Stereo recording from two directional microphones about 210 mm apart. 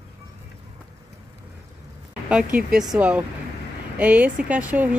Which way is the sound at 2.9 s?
5° right (ahead or behind).